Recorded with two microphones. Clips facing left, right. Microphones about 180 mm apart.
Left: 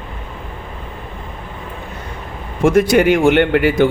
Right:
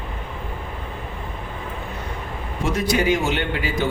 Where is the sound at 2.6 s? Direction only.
50° left (ahead or behind).